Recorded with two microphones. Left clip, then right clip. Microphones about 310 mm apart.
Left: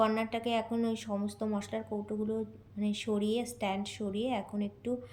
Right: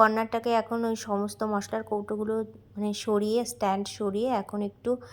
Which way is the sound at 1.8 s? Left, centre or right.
Right.